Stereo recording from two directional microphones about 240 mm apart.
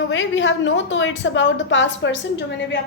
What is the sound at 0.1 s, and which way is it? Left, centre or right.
A woman's voice, left.